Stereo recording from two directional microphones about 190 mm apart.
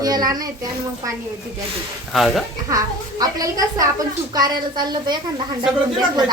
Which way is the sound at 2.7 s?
20° right (ahead or behind).